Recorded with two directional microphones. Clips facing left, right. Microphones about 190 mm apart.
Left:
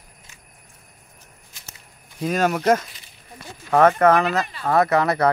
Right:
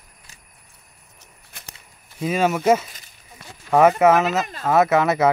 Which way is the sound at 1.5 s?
60° right (ahead or behind).